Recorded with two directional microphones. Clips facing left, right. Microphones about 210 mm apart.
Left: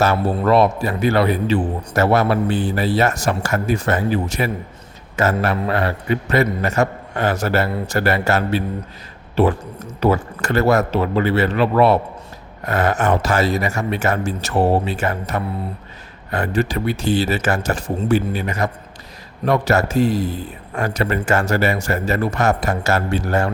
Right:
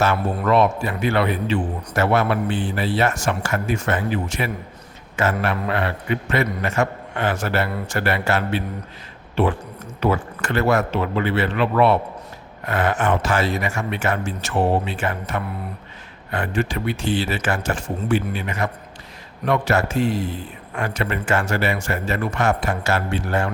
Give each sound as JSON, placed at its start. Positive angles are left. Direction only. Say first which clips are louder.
{"t": 0.3, "sound": "a man's voice", "louder": "left 3 dB", "side_deg": 35}